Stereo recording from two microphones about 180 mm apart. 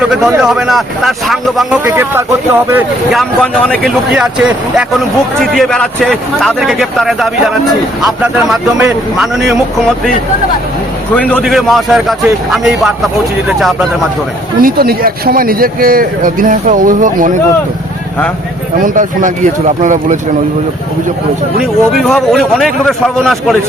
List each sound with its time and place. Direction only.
0.1 s a man's voice: 5° right (ahead or behind)
3.1 s a man's voice: centre (ahead or behind)
11.1 s a man's voice: 5° left (ahead or behind)
14.6 s a man's voice: 55° right (ahead or behind)
18.8 s a man's voice: 45° right (ahead or behind)
21.6 s a man's voice: centre (ahead or behind)